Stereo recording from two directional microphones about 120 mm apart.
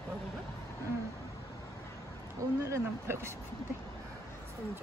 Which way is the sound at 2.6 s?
20° right (ahead or behind).